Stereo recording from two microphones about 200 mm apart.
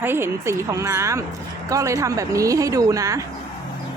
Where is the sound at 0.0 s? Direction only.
10° right (ahead or behind).